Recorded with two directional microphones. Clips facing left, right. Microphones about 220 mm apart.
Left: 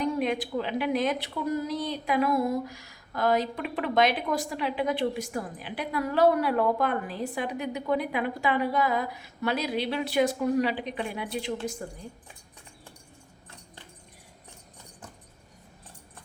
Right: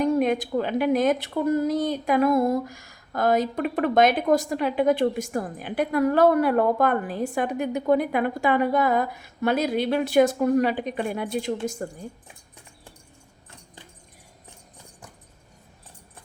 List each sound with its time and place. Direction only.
0.0 s a woman's voice: 50° right (ahead or behind)